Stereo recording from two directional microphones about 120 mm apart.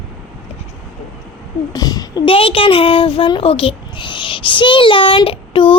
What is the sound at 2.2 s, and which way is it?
A child's voice, 50° left (ahead or behind).